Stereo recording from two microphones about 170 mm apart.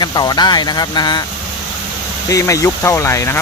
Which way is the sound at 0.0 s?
25° left (ahead or behind).